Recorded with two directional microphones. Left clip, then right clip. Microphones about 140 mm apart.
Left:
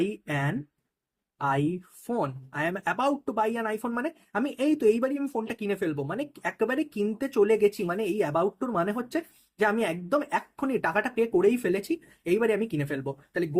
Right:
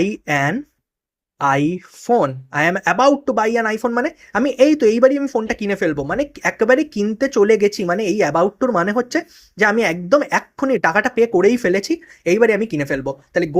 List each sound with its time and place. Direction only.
0.0 s speech: 45° right (ahead or behind)